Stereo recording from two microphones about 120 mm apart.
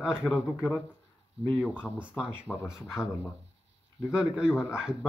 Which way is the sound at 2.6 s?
5° right (ahead or behind).